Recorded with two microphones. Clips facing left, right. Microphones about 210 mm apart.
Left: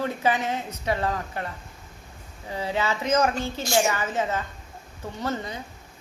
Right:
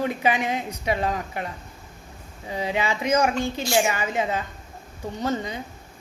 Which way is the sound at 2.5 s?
15° right (ahead or behind).